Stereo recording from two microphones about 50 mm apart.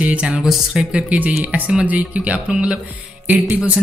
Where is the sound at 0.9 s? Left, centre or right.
Right.